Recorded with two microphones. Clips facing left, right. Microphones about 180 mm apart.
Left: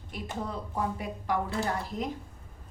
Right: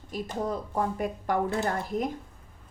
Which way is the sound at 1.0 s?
50° right (ahead or behind).